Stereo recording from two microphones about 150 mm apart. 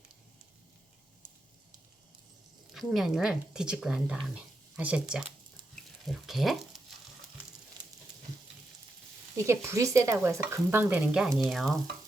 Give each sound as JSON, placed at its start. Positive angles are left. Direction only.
{"t": 2.7, "sound": "speech", "side_deg": 0}
{"t": 9.4, "sound": "speech", "side_deg": -20}